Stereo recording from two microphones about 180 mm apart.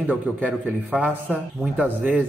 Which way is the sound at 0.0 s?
5° right (ahead or behind).